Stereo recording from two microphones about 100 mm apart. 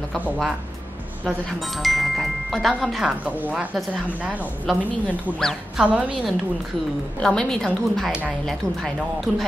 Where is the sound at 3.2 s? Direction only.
15° right (ahead or behind).